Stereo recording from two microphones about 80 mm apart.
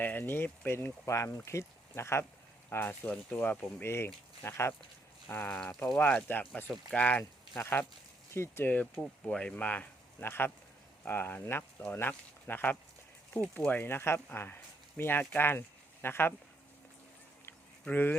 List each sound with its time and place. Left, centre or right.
0.0 s speech: left
7.6 s speech: left
14.3 s a sound: left
15.2 s speech: left
17.8 s speech: left